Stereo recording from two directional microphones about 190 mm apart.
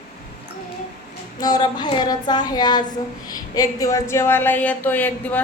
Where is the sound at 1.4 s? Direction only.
20° left (ahead or behind).